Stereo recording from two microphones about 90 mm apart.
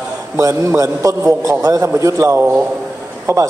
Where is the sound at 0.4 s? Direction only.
35° right (ahead or behind).